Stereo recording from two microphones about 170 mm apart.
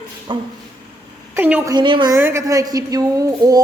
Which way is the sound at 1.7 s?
30° right (ahead or behind).